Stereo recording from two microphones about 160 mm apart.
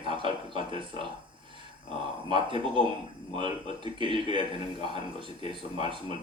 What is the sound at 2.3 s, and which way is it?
Speech, 30° right (ahead or behind).